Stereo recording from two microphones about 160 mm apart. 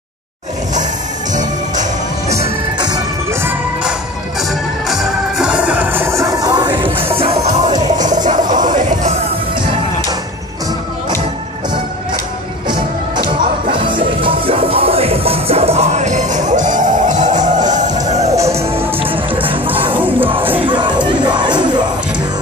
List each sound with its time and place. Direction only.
1.3 s music: 50° right (ahead or behind)
2.8 s music: 25° right (ahead or behind)
4.4 s music: centre (ahead or behind); by 9.1 s 50° right (ahead or behind)
12.6 s music: 25° right (ahead or behind)
14.2 s music: 35° right (ahead or behind)
20.0 s music: 10° right (ahead or behind)
20.5 s crowd: 30° right (ahead or behind)